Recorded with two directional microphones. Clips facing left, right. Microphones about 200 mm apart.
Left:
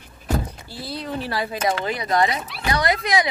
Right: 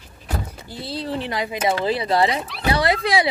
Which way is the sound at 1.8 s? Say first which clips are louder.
Right 3 dB; 30° right (ahead or behind).